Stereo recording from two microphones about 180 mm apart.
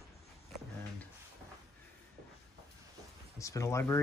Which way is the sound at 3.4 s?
15° left (ahead or behind).